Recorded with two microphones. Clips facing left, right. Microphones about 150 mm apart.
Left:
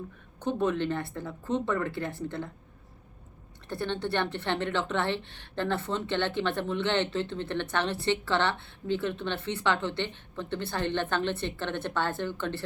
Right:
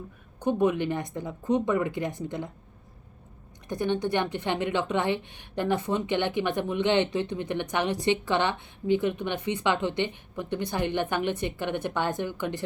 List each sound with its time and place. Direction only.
0.3 s speech: 15° right (ahead or behind)
3.7 s speech: 15° right (ahead or behind)